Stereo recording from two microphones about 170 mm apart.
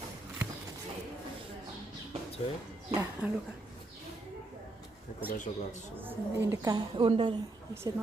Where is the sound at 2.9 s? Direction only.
10° right (ahead or behind).